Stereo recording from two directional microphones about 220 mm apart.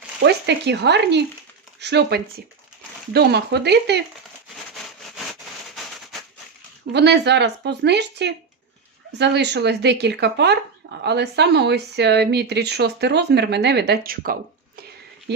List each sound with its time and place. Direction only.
0.2 s speech: 50° right (ahead or behind)
4.7 s a sound: centre (ahead or behind)
6.9 s speech: 50° right (ahead or behind)